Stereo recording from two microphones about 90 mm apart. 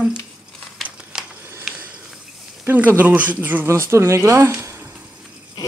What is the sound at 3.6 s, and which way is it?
Speech, 30° right (ahead or behind).